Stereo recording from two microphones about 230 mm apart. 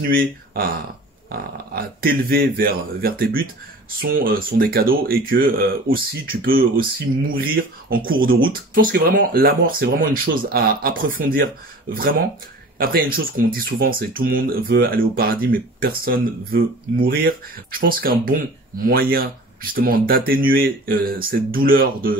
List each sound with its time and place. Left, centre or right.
0.1 s speech: right